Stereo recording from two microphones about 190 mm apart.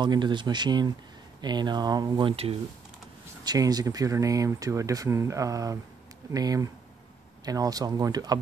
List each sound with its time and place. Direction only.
0.0 s speech: 25° right (ahead or behind)